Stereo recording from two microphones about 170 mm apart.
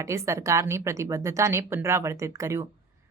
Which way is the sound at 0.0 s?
15° right (ahead or behind).